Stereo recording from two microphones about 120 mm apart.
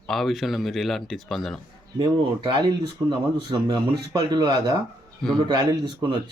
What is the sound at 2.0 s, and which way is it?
Speech, 40° right (ahead or behind).